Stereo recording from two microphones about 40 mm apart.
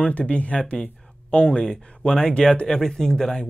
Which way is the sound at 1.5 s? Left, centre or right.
Centre.